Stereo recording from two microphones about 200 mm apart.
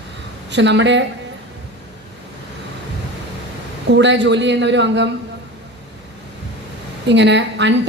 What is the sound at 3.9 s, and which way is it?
A woman's voice, 60° right (ahead or behind).